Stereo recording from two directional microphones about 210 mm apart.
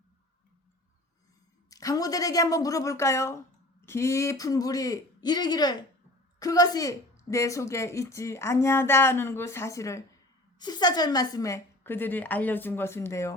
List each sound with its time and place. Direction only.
1.7 s a woman's voice: 15° left (ahead or behind)